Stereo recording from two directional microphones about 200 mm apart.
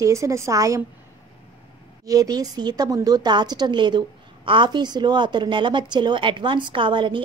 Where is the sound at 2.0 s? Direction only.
20° right (ahead or behind).